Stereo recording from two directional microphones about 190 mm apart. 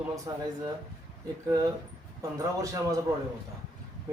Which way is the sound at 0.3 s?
20° right (ahead or behind).